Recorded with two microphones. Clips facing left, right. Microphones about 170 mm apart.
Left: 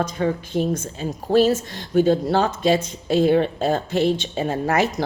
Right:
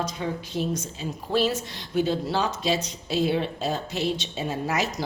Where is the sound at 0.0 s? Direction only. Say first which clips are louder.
Left 7 dB; 55° left (ahead or behind).